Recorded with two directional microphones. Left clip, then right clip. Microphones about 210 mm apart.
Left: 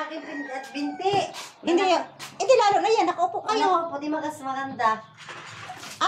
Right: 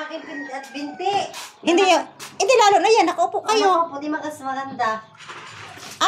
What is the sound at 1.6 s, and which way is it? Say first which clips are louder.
A woman's voice: right 5 dB; 30° right (ahead or behind).